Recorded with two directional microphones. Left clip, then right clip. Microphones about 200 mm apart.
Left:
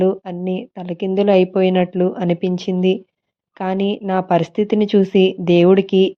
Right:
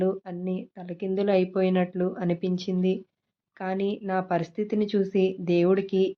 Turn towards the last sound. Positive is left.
turn(degrees=35)  # may be behind; listen again after turning